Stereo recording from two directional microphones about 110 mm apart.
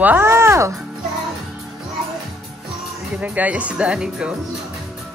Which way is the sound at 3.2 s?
15° right (ahead or behind).